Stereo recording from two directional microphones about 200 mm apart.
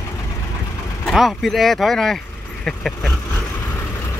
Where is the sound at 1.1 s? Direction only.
Centre (ahead or behind).